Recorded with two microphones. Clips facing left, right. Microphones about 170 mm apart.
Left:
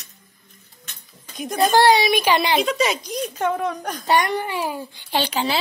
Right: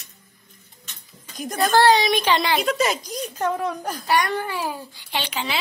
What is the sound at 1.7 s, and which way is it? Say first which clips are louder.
Speech: left 1 dB; 15° left (ahead or behind).